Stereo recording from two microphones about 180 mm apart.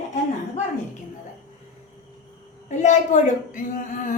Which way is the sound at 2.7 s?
40° left (ahead or behind).